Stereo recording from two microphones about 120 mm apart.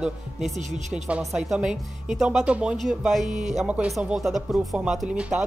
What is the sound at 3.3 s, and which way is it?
Speech, 85° right.